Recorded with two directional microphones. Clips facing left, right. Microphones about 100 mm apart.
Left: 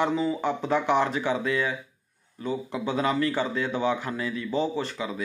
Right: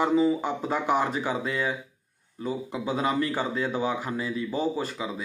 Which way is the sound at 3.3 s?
35° right (ahead or behind).